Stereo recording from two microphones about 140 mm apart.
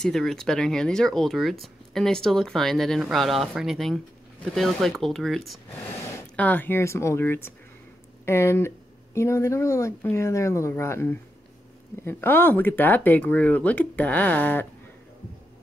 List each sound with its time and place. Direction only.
0.0 s speech: 5° left (ahead or behind)